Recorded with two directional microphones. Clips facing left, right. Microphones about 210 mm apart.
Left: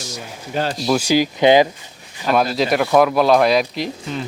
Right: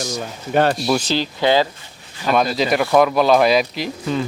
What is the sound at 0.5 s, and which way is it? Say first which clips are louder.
Speech: right 6 dB; 60° right (ahead or behind).